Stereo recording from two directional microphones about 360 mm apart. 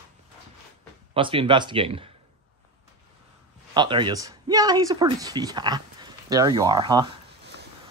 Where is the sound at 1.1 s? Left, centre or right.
Centre.